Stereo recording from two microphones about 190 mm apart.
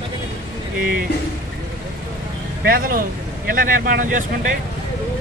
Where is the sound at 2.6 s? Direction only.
50° right (ahead or behind).